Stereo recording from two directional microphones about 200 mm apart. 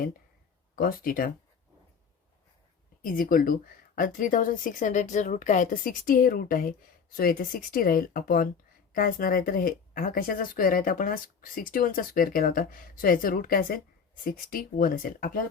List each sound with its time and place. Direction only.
0.8 s a woman's voice: 45° left (ahead or behind)
3.0 s a woman's voice: 45° left (ahead or behind)